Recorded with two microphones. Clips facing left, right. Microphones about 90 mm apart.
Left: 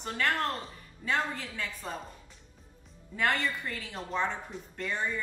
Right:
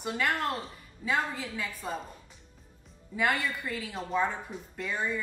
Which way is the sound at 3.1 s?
5° right (ahead or behind).